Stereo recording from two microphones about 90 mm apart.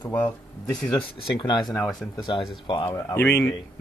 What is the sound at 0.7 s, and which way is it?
Speech, 5° left (ahead or behind).